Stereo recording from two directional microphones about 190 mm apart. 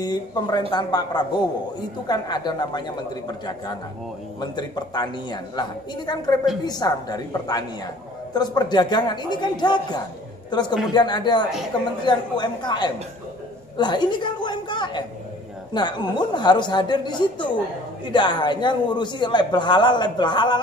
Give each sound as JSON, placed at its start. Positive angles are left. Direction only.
{"t": 0.0, "sound": "speech", "side_deg": 20}